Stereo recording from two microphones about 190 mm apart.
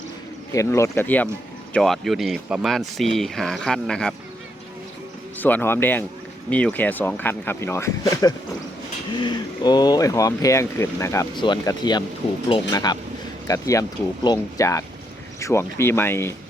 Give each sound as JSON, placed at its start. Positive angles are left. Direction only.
{"t": 0.5, "sound": "speech", "side_deg": 15}
{"t": 5.4, "sound": "speech", "side_deg": 10}